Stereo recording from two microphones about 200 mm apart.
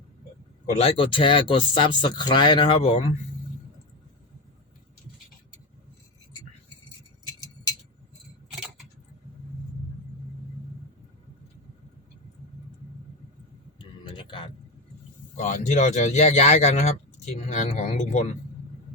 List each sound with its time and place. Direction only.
0.8 s speech: 30° left (ahead or behind)
13.7 s a sound: 25° left (ahead or behind)
15.4 s speech: 35° left (ahead or behind)